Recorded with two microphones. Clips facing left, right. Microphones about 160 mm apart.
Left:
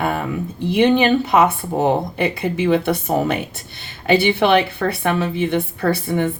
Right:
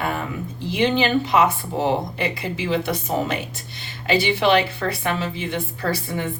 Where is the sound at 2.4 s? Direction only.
60° left (ahead or behind).